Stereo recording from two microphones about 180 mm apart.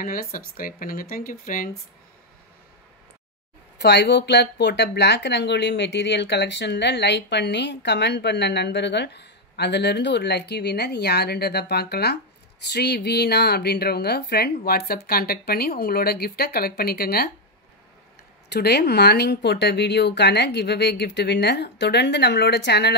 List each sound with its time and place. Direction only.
0.0 s speech: 50° left (ahead or behind)
3.7 s a woman's voice: 70° left (ahead or behind)
18.5 s speech: 65° left (ahead or behind)